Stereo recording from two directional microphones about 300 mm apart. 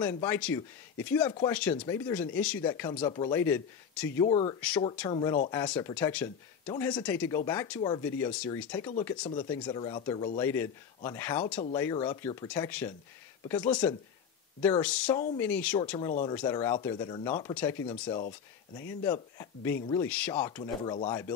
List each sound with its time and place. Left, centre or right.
0.0 s speech: centre
4.6 s speech: centre
16.1 s speech: left
16.3 s speech: centre